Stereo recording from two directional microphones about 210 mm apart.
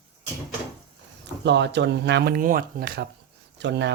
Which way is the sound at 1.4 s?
55° right (ahead or behind).